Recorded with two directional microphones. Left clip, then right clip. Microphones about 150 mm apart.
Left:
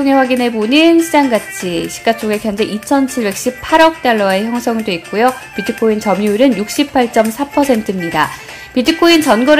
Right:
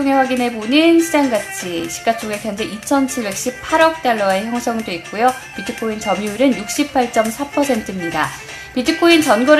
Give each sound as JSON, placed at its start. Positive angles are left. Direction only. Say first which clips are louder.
{"t": 0.0, "sound": "a woman's voice", "louder": "left 4 dB", "side_deg": 30}